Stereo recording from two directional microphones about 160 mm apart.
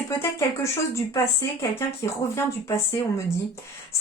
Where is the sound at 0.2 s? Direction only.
15° left (ahead or behind).